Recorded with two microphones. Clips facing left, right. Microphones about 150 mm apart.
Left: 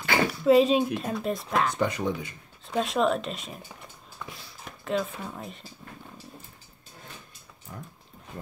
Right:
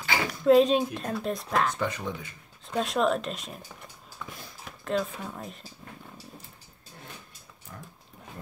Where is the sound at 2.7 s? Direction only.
Centre (ahead or behind).